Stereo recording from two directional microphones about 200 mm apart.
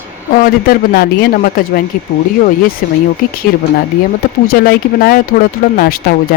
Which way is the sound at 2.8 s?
40° left (ahead or behind).